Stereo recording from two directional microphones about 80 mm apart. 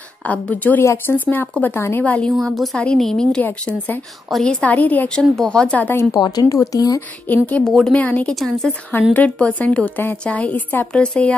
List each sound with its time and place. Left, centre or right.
0.3 s a woman's voice: centre
2.0 s speech: centre
2.4 s a woman's voice: centre
3.4 s a woman's voice: left
4.3 s speech: centre
6.1 s speech: left
7.4 s speech: centre
8.4 s a woman's voice: centre
9.1 s a woman's voice: centre